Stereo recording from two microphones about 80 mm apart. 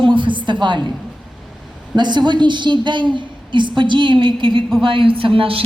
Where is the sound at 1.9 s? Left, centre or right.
Right.